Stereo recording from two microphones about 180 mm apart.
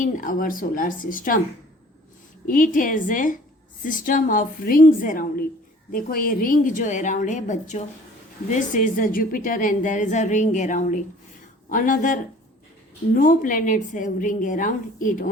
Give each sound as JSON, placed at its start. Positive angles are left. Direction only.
{"t": 0.0, "sound": "a woman's voice", "side_deg": 50}
{"t": 2.5, "sound": "a woman's voice", "side_deg": 50}